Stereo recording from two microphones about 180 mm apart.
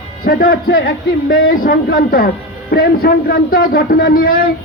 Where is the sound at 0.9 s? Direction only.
90° left.